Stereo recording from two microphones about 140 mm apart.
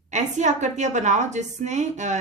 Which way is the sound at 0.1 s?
60° right (ahead or behind).